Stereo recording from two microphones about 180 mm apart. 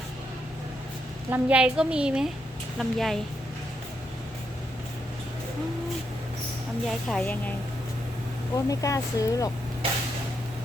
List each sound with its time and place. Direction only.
1.3 s a woman's voice: 5° right (ahead or behind)
6.8 s a woman's voice: 5° left (ahead or behind)
8.5 s speech: 20° left (ahead or behind)